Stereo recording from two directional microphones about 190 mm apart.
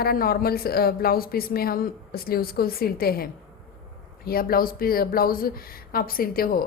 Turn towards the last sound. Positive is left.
turn(degrees=50)  # may be behind; listen again after turning